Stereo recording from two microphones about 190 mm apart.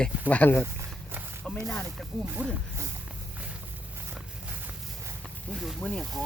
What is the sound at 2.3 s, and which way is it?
Speech, 10° right (ahead or behind).